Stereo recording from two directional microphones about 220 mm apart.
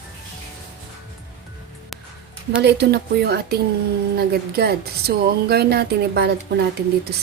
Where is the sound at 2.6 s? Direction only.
50° right (ahead or behind).